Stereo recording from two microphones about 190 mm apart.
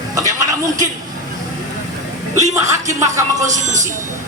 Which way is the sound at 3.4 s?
40° right (ahead or behind).